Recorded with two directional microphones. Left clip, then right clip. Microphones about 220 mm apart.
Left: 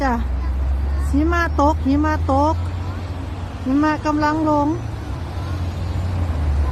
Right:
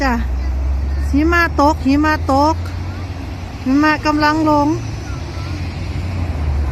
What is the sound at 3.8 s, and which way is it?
Speech, 5° right (ahead or behind).